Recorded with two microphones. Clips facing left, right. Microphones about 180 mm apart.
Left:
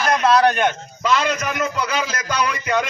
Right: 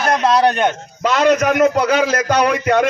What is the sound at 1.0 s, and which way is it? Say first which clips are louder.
A man's voice: right 6 dB; 55° right (ahead or behind).